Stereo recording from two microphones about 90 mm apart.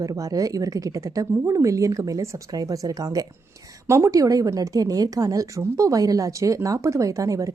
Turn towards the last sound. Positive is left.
turn(degrees=-40)  # may be behind; listen again after turning